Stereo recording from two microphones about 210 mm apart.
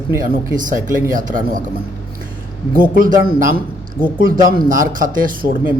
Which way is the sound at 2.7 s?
40° right (ahead or behind).